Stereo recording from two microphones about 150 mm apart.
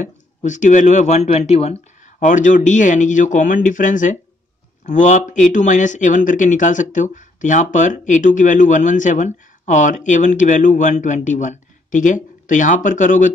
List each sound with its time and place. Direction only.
0.0 s speech: 55° left (ahead or behind)